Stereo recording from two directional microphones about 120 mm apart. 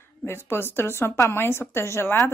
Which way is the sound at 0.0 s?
20° left (ahead or behind).